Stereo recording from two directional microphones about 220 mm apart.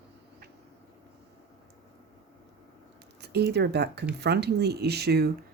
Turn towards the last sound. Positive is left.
turn(degrees=-45)  # may be behind; listen again after turning